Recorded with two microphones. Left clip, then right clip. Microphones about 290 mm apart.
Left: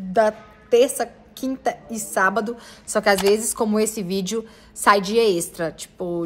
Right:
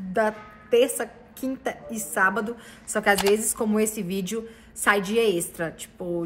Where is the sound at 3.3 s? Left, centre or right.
Centre.